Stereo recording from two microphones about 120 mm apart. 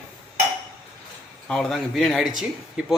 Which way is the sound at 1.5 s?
5° left (ahead or behind).